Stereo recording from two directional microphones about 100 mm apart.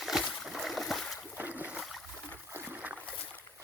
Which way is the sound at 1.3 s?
20° right (ahead or behind).